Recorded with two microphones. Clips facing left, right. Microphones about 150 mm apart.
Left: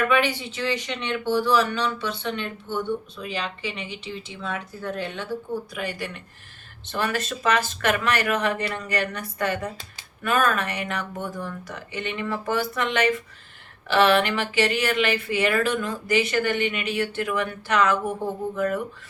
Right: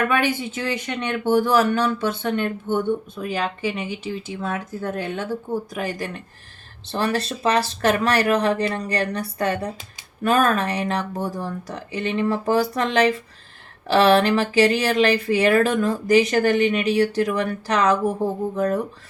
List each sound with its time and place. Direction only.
0.1 s speech: 45° right (ahead or behind)